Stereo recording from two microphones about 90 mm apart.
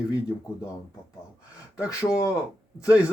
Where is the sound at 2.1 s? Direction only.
40° left (ahead or behind).